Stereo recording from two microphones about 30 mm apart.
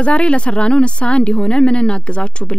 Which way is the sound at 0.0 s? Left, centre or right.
Left.